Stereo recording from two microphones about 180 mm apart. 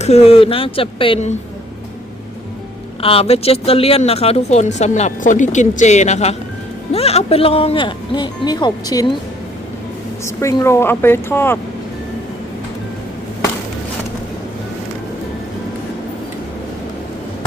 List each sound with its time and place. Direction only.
0.0 s speech: 35° left (ahead or behind)
3.0 s speech: 30° left (ahead or behind)
10.2 s a woman's voice: 15° left (ahead or behind)